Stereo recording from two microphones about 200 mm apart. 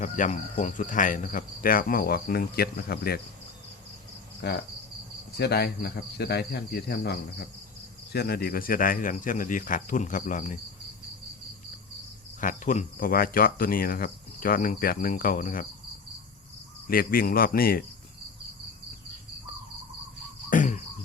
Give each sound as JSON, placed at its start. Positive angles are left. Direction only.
{"t": 0.0, "sound": "speech", "side_deg": 40}
{"t": 4.4, "sound": "cricket", "side_deg": 55}
{"t": 5.4, "sound": "speech", "side_deg": 55}
{"t": 12.4, "sound": "speech", "side_deg": 40}
{"t": 16.8, "sound": "speech", "side_deg": 45}
{"t": 20.5, "sound": "cricket", "side_deg": 40}